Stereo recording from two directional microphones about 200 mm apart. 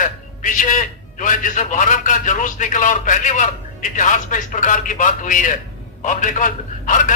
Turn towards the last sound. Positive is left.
turn(degrees=40)  # may be behind; listen again after turning